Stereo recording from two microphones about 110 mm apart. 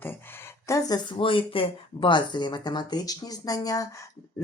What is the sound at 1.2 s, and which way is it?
Speech, 50° left (ahead or behind).